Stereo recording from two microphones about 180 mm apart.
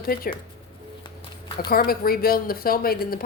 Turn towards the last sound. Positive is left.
turn(degrees=55)  # may be behind; listen again after turning